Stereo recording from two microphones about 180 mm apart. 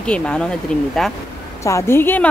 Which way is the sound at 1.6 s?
15° left (ahead or behind).